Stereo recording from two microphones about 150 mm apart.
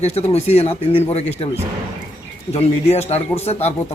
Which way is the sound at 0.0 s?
45° left (ahead or behind).